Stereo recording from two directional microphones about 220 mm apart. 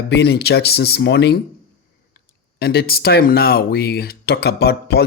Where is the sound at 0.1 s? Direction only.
45° left (ahead or behind).